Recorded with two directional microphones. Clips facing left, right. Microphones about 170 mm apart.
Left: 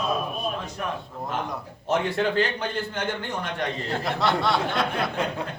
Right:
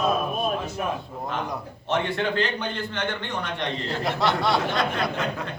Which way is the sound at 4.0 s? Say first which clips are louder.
Right 1 dB; centre (ahead or behind).